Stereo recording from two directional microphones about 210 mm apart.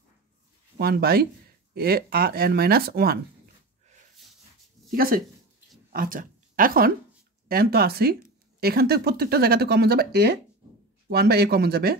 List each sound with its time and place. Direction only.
0.7 s speech: 45° right (ahead or behind)
4.9 s speech: 45° right (ahead or behind)